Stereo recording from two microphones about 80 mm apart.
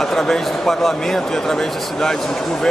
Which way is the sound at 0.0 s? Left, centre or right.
Centre.